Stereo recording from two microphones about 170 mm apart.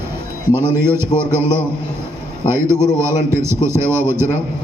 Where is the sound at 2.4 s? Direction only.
15° right (ahead or behind).